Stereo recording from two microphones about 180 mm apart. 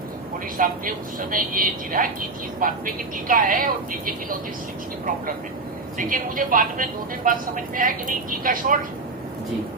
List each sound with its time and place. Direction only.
0.5 s speech: 50° right (ahead or behind)
6.0 s speech: 50° right (ahead or behind)